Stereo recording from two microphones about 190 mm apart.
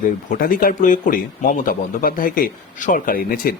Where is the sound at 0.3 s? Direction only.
45° left (ahead or behind).